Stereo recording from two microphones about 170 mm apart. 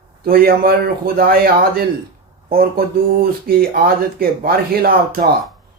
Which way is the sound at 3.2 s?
60° right (ahead or behind).